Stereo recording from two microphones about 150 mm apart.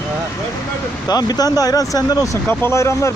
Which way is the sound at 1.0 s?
25° left (ahead or behind).